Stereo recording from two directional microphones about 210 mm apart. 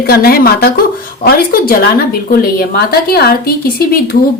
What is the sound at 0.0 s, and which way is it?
A woman's voice, 45° left (ahead or behind).